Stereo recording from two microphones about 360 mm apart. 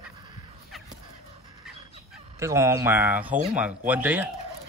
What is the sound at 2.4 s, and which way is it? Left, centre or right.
A man's voice, centre.